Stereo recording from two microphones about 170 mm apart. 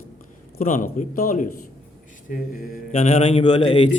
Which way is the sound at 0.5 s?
50° left (ahead or behind).